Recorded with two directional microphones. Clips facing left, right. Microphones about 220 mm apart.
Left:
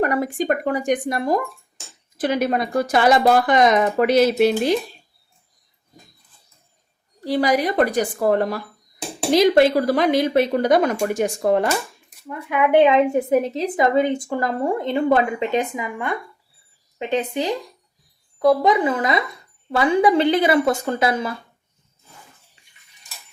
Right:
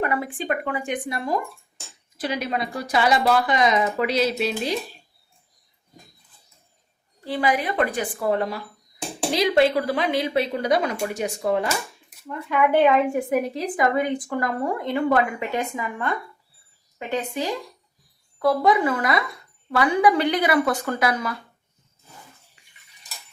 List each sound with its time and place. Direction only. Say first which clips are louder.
0.0 s speech: left 5 dB; 40° left (ahead or behind)
7.3 s a woman's voice: left 5 dB; 40° left (ahead or behind)
12.3 s a woman's voice: left 3 dB; 15° left (ahead or behind)
22.6 s dishes: even; 25° left (ahead or behind)